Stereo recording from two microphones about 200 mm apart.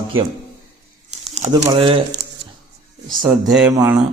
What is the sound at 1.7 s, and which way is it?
Speech, 25° right (ahead or behind).